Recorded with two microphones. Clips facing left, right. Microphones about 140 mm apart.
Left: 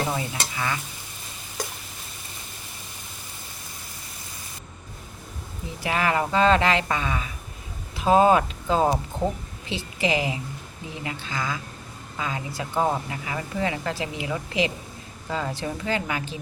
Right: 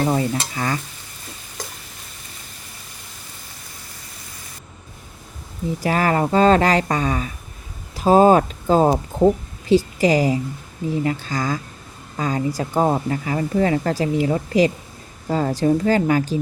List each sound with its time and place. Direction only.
0.1 s speech: 40° right (ahead or behind)
5.8 s speech: 40° right (ahead or behind)